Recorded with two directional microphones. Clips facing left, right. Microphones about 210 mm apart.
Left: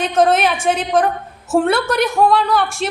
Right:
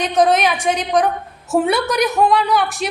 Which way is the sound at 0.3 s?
5° left (ahead or behind).